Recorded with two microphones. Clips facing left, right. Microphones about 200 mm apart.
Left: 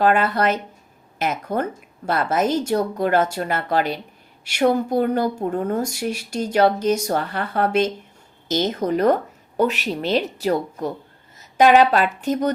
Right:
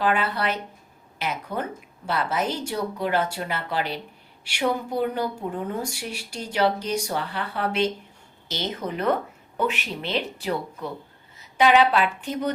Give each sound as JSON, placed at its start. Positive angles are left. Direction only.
{"t": 0.0, "sound": "a woman's voice", "side_deg": 45}